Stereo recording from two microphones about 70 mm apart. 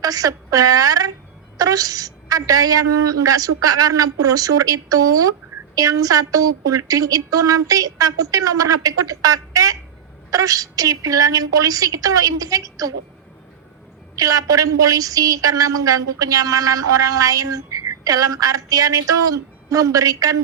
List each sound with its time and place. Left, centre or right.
0.0 s a woman's voice: right
14.2 s a woman's voice: right